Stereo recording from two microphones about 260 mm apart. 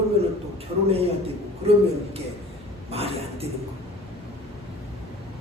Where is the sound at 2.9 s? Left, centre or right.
Right.